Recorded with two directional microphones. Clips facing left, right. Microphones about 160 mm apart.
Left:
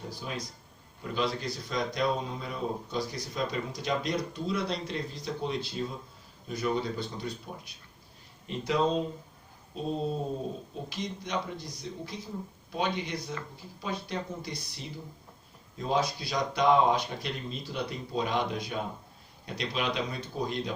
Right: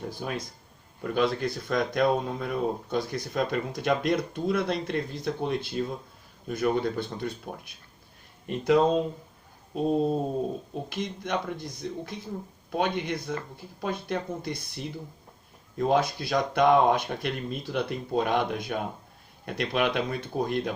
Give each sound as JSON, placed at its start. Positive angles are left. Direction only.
{"t": 0.1, "sound": "speech", "side_deg": -55}